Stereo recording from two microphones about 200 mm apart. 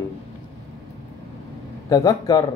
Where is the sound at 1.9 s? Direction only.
20° left (ahead or behind).